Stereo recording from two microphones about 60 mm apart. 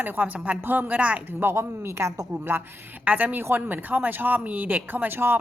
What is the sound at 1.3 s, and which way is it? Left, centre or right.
Speech, right.